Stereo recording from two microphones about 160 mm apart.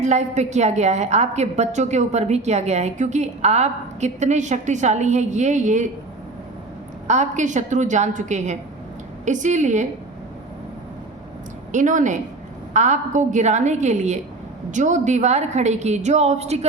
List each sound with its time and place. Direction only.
0.0 s a woman's voice: 45° right (ahead or behind)
7.1 s a woman's voice: 50° right (ahead or behind)
11.7 s a woman's voice: 50° right (ahead or behind)